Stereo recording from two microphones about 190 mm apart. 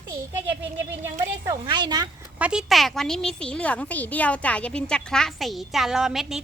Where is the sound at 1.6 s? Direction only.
25° right (ahead or behind).